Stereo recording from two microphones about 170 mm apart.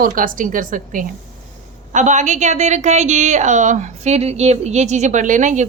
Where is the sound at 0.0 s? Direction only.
55° right (ahead or behind).